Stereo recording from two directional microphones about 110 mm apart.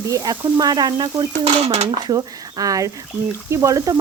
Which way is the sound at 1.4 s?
65° right (ahead or behind).